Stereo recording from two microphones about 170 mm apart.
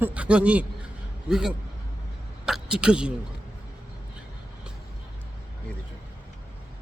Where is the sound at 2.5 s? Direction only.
5° right (ahead or behind).